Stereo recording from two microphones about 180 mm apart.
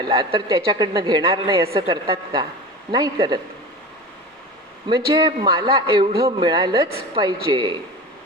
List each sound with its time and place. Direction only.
0.0 s speech: 30° right (ahead or behind)
1.5 s a woman's voice: 15° right (ahead or behind)
4.9 s speech: 25° right (ahead or behind)